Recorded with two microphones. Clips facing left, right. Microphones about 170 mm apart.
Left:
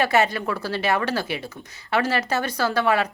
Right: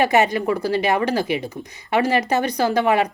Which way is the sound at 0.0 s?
15° right (ahead or behind).